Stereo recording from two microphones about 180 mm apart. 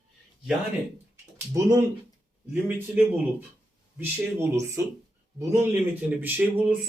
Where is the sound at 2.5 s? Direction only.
10° right (ahead or behind).